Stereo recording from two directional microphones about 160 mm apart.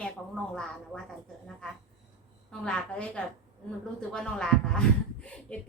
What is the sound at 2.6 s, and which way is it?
A woman's voice, 5° left (ahead or behind).